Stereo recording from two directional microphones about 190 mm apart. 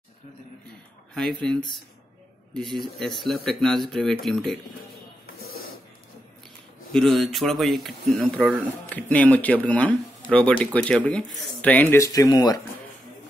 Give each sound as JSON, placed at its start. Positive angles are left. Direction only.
{"t": 1.1, "sound": "speech", "side_deg": 5}
{"t": 5.4, "sound": "a sound", "side_deg": 50}
{"t": 6.9, "sound": "speech", "side_deg": 0}